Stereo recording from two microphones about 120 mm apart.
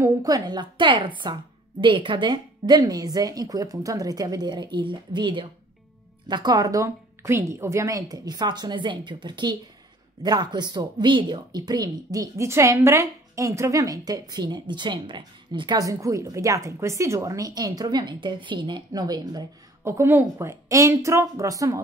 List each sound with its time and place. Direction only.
0.0 s a woman's voice: 30° right (ahead or behind)
19.8 s a woman's voice: 20° right (ahead or behind)